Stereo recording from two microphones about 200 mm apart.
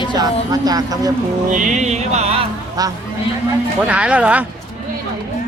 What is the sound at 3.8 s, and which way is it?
Speech, 5° right (ahead or behind).